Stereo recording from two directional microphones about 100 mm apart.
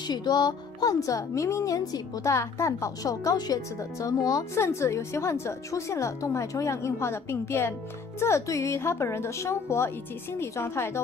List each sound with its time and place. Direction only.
0.1 s speech: 45° left (ahead or behind); by 10.9 s 25° left (ahead or behind)